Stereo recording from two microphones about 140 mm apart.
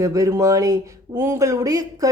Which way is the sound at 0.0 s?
20° right (ahead or behind).